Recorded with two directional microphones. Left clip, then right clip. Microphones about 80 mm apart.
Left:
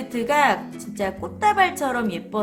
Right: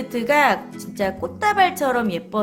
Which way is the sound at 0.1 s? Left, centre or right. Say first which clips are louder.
Right 2 dB; right.